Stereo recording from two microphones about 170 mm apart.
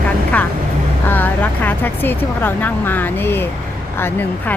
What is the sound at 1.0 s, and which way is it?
Speech, 10° left (ahead or behind).